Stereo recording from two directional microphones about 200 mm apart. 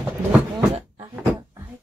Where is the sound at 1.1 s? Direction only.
10° right (ahead or behind).